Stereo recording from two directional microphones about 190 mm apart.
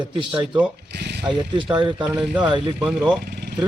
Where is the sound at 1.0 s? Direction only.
60° right (ahead or behind).